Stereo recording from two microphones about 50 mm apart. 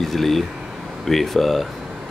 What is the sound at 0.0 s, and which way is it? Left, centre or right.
Speech, centre.